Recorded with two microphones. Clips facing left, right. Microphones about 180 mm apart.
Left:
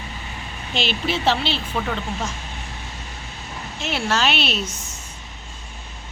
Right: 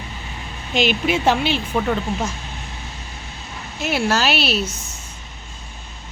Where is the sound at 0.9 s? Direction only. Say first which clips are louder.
Right 2 dB; 10° right (ahead or behind).